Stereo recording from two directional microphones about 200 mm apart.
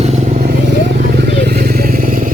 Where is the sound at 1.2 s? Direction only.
55° right (ahead or behind).